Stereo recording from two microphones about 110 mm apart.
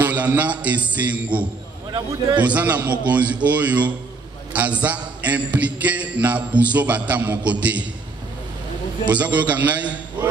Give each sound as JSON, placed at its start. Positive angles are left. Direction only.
{"t": 0.0, "sound": "a man's voice", "side_deg": -15}
{"t": 1.9, "sound": "a man's voice", "side_deg": -40}
{"t": 2.4, "sound": "a man's voice", "side_deg": -15}
{"t": 9.0, "sound": "a man's voice", "side_deg": -15}